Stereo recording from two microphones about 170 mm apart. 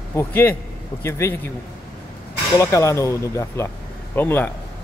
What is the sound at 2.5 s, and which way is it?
A man's voice, 15° left (ahead or behind).